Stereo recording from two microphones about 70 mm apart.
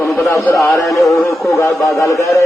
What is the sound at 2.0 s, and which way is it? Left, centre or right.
Speech, left.